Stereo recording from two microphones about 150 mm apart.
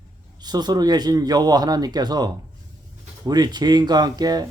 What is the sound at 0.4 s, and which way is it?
Speech, 25° right (ahead or behind).